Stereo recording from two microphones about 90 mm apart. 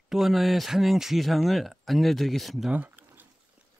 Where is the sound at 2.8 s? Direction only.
25° right (ahead or behind).